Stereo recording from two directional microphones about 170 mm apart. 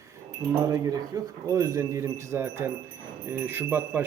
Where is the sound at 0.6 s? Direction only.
20° right (ahead or behind).